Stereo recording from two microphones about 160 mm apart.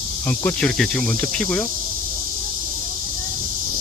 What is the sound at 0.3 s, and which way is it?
Speech, 10° left (ahead or behind).